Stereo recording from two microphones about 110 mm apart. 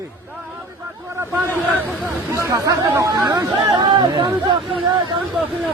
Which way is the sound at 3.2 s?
35° right (ahead or behind).